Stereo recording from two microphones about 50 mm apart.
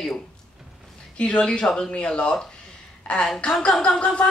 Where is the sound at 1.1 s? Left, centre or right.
Left.